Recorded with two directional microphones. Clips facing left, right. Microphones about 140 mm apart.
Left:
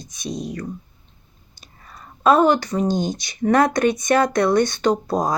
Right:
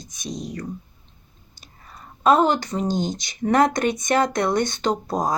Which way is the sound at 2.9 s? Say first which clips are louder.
Left 1 dB; 50° left (ahead or behind).